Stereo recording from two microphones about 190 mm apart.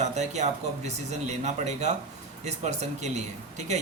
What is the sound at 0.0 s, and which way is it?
Speech, 35° right (ahead or behind).